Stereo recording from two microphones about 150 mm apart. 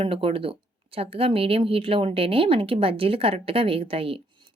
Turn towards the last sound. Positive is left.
turn(degrees=-40)  # may be behind; listen again after turning